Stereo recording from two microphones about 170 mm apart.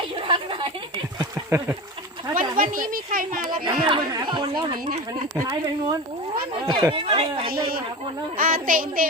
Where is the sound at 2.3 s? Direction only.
50° right (ahead or behind).